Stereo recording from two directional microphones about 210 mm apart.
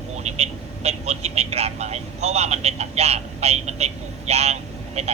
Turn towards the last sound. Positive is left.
turn(degrees=-30)  # may be behind; listen again after turning